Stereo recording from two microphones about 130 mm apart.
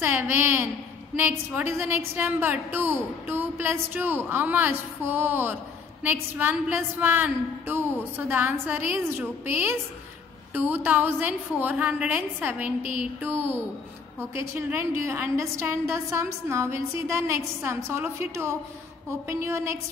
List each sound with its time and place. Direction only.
0.0 s a woman's voice: 15° right (ahead or behind)
14.7 s a woman's voice: 20° right (ahead or behind)